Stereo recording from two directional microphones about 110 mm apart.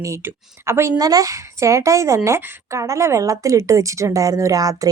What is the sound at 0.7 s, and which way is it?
Speech, 25° right (ahead or behind).